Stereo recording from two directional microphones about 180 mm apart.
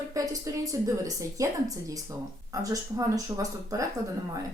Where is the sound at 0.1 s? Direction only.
20° right (ahead or behind).